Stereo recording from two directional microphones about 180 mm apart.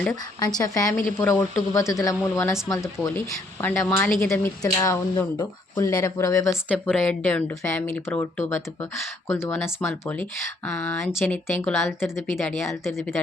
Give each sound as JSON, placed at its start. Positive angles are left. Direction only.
{"t": 0.3, "sound": "speech", "side_deg": 20}
{"t": 0.9, "sound": "speech", "side_deg": 10}
{"t": 9.2, "sound": "speech", "side_deg": 15}